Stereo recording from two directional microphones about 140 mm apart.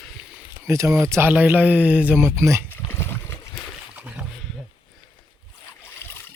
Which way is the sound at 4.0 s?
10° right (ahead or behind).